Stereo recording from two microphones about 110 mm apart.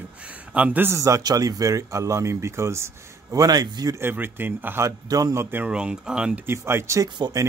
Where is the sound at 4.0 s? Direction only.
20° right (ahead or behind).